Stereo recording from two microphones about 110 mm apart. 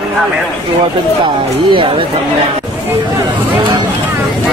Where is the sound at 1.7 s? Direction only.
55° right (ahead or behind).